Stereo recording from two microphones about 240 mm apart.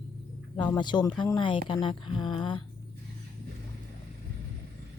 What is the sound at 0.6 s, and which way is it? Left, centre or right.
Speech, centre.